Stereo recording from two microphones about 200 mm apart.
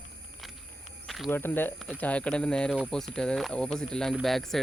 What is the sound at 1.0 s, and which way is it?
Speech, centre (ahead or behind).